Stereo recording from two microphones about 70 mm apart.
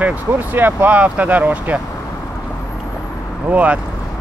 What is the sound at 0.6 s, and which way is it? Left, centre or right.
Speech, right.